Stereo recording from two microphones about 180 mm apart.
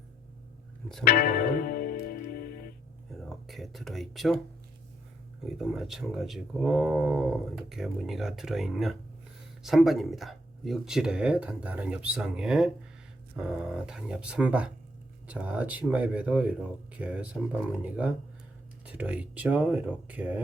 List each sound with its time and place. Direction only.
1.0 s music: 55° left (ahead or behind)
3.2 s a sound: centre (ahead or behind)
5.5 s speech: centre (ahead or behind)